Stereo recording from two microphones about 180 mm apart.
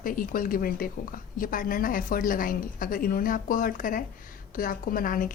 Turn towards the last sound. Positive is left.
turn(degrees=50)  # may be behind; listen again after turning